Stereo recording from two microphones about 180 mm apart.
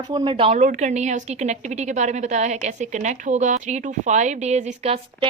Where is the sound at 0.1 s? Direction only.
25° right (ahead or behind).